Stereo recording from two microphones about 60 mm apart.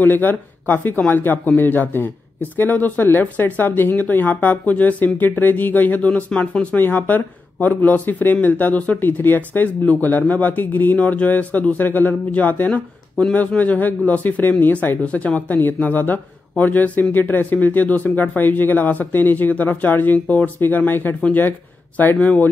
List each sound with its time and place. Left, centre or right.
0.0 s speech: left
6.0 s speech: centre
6.8 s speech: left